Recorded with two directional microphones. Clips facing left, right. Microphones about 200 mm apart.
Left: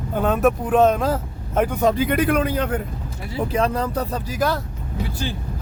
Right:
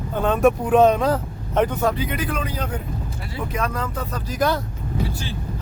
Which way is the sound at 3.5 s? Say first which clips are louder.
Left 5 dB; 30° left (ahead or behind).